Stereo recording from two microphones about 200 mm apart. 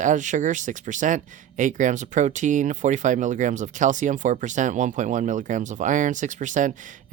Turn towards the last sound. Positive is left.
turn(degrees=-40)  # may be behind; listen again after turning